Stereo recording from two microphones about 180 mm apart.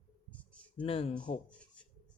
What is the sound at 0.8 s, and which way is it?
Speech, 30° left (ahead or behind).